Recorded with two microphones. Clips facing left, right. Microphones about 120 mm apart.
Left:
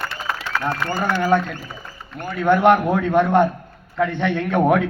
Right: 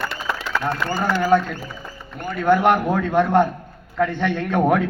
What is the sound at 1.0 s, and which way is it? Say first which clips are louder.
Speech: right 1 dB; 20° left (ahead or behind).